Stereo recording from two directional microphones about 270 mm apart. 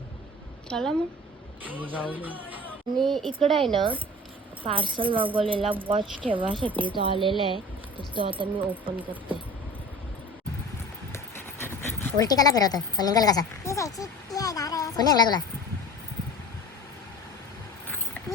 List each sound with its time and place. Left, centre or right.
0.7 s a woman's voice: centre
4.6 s speech: centre
11.1 s a sound: centre
12.2 s speech: centre